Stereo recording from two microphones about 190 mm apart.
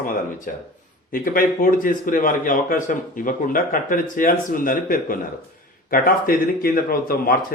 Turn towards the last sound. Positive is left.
turn(degrees=50)  # may be behind; listen again after turning